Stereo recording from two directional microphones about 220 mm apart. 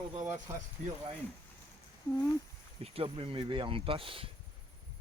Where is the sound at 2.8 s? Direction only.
25° right (ahead or behind).